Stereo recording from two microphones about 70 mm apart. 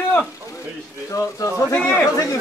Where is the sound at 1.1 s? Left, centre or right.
Left.